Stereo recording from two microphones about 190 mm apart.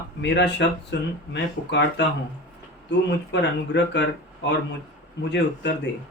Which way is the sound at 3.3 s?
65° left (ahead or behind).